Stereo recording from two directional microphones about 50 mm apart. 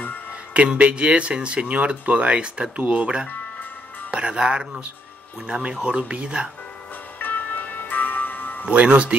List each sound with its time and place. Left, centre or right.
0.5 s speech: right
7.2 s music: left
8.6 s speech: right